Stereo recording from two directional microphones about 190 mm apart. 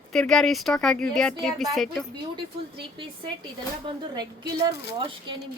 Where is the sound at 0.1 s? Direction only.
5° left (ahead or behind).